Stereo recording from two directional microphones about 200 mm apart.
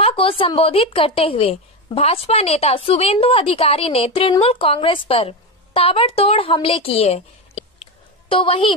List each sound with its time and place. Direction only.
0.0 s a woman's voice: 30° left (ahead or behind)